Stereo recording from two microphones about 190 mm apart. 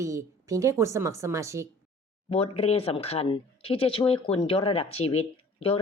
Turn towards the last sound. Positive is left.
turn(degrees=30)  # may be behind; listen again after turning